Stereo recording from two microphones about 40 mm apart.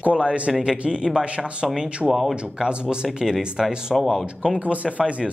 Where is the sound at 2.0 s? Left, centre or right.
Centre.